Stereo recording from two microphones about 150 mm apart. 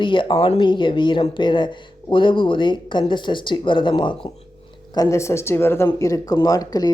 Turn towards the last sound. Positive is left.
turn(degrees=25)  # may be behind; listen again after turning